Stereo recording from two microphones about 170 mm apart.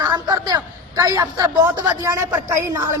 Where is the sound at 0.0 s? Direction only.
20° right (ahead or behind).